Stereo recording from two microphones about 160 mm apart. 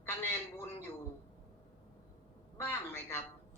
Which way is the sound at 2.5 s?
15° left (ahead or behind).